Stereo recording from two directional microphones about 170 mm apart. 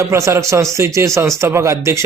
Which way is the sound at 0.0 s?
15° right (ahead or behind).